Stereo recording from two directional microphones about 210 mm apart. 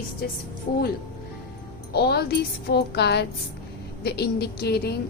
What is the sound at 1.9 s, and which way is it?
A woman's voice, 50° left (ahead or behind).